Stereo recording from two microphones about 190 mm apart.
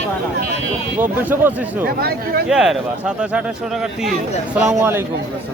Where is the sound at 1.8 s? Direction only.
55° right (ahead or behind).